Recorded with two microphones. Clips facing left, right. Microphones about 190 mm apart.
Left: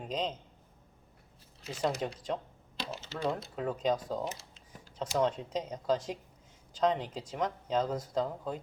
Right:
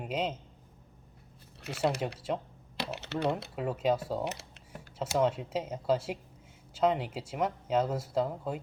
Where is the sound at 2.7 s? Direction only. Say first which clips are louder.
Right 4 dB; 65° right (ahead or behind).